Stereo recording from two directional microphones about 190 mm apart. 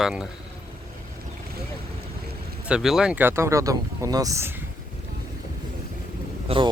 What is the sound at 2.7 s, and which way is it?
Speech, centre (ahead or behind).